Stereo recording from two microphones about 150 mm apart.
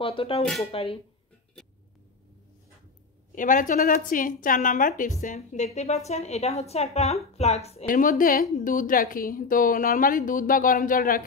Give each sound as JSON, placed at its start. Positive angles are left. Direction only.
{"t": 0.0, "sound": "speech", "side_deg": 40}
{"t": 0.4, "sound": "speech", "side_deg": 0}
{"t": 0.7, "sound": "speech", "side_deg": 40}
{"t": 3.3, "sound": "a woman's voice", "side_deg": 60}
{"t": 7.8, "sound": "a woman's voice", "side_deg": 65}